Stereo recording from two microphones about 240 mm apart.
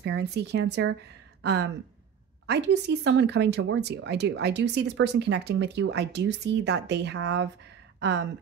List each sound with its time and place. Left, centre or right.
0.0 s speech: right